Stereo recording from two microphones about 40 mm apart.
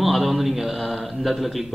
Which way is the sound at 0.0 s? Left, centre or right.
Centre.